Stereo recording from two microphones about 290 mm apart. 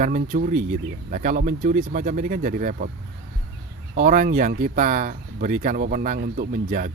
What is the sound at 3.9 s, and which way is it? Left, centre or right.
Speech, right.